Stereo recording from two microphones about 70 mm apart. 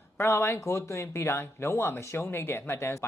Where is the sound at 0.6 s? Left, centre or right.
Left.